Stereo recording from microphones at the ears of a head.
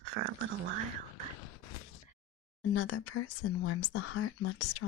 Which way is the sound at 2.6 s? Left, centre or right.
Left.